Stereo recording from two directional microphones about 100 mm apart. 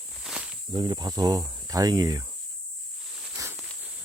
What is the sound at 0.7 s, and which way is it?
Speech, 45° right (ahead or behind).